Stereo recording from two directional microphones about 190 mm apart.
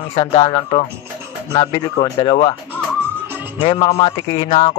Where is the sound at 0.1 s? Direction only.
30° left (ahead or behind).